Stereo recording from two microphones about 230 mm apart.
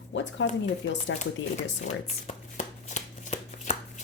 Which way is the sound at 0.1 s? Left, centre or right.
Left.